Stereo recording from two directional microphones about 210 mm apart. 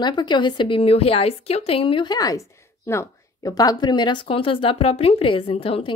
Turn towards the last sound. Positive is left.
turn(degrees=25)  # may be behind; listen again after turning